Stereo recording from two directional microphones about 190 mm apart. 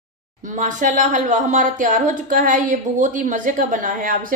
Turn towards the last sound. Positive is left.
turn(degrees=-45)  # may be behind; listen again after turning